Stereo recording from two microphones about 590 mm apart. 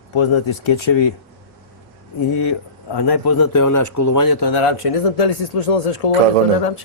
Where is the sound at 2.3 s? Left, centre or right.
Left.